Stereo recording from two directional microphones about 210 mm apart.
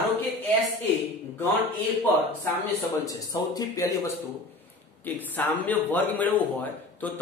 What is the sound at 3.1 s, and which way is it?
Speech, 15° left (ahead or behind).